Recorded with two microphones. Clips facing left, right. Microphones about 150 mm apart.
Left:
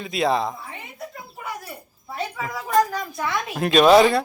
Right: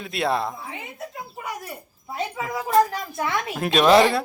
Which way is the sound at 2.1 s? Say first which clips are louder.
Right 1 dB; 20° right (ahead or behind).